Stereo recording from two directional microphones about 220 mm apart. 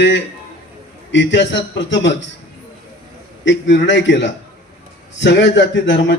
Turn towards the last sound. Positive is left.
turn(degrees=55)  # may be behind; listen again after turning